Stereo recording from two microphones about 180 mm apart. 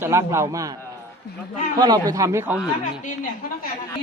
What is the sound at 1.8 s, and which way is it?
Speech, 20° right (ahead or behind).